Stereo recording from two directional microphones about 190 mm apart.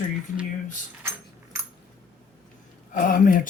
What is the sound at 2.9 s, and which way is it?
Speech, 45° left (ahead or behind).